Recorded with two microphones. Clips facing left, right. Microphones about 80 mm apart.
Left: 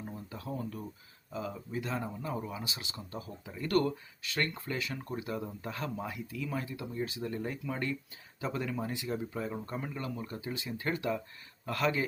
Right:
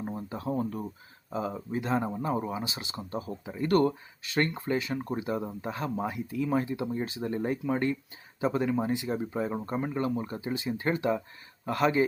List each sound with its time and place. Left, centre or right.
0.0 s speech: right